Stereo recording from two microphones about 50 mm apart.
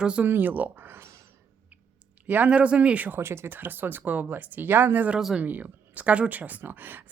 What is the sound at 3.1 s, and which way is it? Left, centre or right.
Speech, right.